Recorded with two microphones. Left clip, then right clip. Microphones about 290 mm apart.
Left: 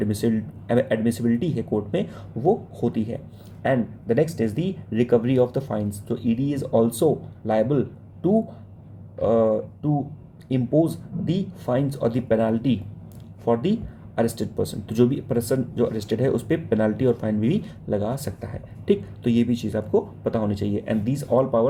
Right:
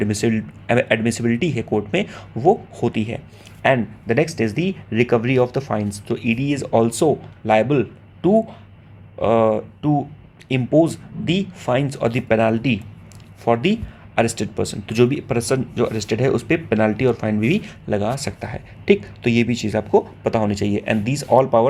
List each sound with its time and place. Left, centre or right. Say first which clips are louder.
0.0 s a man's voice: right 4 dB; centre